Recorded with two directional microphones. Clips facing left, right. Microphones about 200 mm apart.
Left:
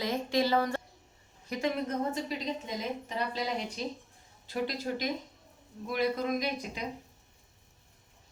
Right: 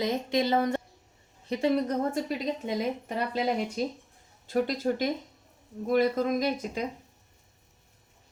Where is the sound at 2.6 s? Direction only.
55° right (ahead or behind).